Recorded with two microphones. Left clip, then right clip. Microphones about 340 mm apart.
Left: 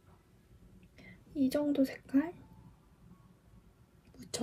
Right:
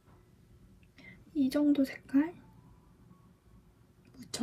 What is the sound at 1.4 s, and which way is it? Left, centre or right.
Speech, left.